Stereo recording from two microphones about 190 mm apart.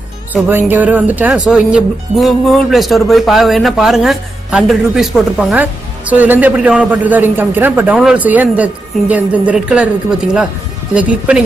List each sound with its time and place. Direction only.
0.3 s speech: 10° right (ahead or behind)